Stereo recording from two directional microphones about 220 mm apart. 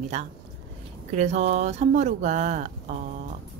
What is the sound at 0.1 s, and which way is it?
Speech, 30° right (ahead or behind).